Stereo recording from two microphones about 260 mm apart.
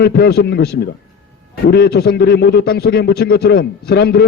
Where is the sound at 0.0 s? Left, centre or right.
Left.